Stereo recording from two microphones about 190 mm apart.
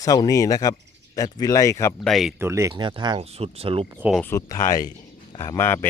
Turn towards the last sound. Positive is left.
turn(degrees=10)  # may be behind; listen again after turning